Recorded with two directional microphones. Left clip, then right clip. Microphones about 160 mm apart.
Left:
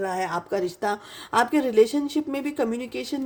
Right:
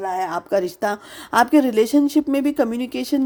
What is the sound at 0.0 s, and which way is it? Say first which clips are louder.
A woman's voice: right 3 dB; 40° right (ahead or behind).